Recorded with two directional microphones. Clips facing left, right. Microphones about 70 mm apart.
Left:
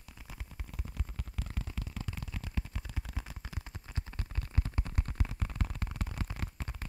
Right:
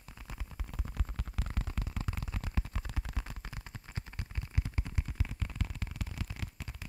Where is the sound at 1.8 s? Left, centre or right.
Right.